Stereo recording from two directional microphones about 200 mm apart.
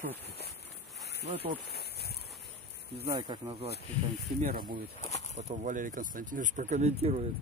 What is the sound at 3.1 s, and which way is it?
Speech, 25° right (ahead or behind).